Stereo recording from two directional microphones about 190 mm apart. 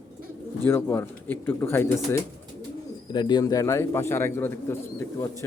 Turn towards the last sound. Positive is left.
turn(degrees=10)  # may be behind; listen again after turning